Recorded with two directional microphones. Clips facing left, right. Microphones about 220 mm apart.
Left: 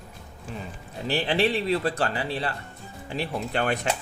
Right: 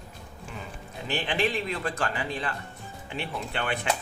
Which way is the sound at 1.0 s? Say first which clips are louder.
Left 4 dB; 35° left (ahead or behind).